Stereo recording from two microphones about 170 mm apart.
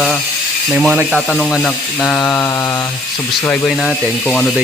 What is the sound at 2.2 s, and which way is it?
Mantra, 15° left (ahead or behind).